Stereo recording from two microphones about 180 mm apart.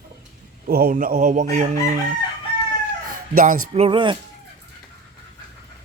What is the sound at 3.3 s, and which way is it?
Speech, 45° right (ahead or behind).